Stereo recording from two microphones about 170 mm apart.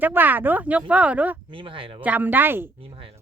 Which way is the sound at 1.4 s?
30° right (ahead or behind).